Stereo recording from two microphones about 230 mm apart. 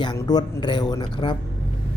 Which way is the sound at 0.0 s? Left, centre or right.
Centre.